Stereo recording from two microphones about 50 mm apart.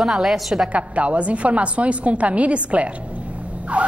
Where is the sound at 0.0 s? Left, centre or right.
Centre.